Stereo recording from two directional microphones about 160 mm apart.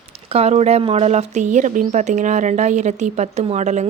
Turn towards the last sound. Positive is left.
turn(degrees=-45)  # may be behind; listen again after turning